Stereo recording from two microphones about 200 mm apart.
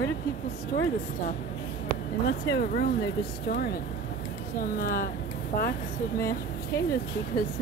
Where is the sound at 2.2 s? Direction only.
55° left (ahead or behind).